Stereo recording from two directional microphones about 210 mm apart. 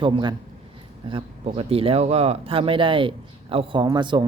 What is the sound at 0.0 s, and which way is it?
Speech, 20° right (ahead or behind).